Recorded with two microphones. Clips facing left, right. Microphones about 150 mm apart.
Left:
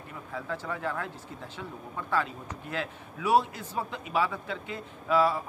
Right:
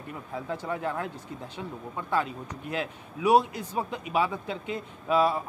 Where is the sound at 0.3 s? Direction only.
20° right (ahead or behind).